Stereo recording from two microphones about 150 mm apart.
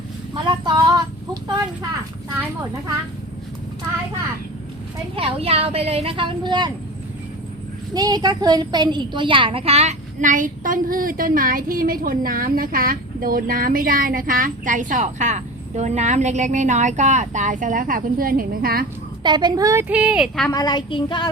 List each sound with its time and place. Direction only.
0.4 s a sound: 30° right (ahead or behind)
5.1 s speech: 40° right (ahead or behind)
7.9 s a woman's voice: 25° right (ahead or behind); by 18.9 s 85° right
19.2 s a woman's voice: 30° right (ahead or behind)
19.9 s speech: 10° right (ahead or behind)
20.5 s child singing: 30° left (ahead or behind)